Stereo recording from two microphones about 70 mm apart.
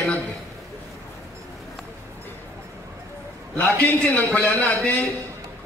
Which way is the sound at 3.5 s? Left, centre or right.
Left.